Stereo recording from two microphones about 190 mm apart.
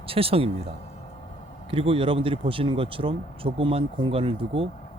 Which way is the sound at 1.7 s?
30° right (ahead or behind).